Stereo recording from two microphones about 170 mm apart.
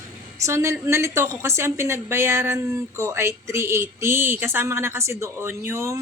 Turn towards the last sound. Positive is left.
turn(degrees=-15)  # may be behind; listen again after turning